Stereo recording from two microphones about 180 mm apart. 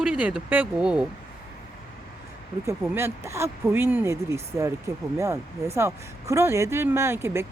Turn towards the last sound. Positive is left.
turn(degrees=-15)  # may be behind; listen again after turning